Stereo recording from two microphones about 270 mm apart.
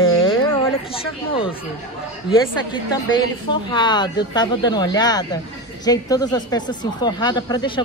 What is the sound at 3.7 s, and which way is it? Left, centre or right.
Speech, centre.